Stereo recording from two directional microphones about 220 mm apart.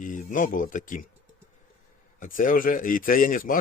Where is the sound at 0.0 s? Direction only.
35° left (ahead or behind).